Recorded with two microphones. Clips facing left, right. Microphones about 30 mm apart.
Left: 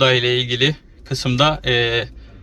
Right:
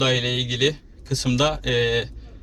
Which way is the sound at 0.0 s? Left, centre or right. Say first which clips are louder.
Left 6 dB; left.